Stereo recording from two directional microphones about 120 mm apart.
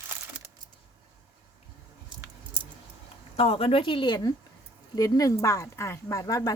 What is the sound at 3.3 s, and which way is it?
Speech, 50° left (ahead or behind).